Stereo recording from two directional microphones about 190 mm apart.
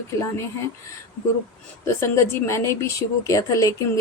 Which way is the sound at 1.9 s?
15° left (ahead or behind).